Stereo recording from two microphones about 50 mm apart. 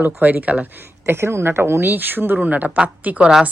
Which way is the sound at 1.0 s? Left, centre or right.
Right.